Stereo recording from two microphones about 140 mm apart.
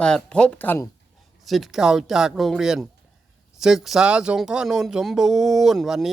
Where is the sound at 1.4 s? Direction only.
Centre (ahead or behind).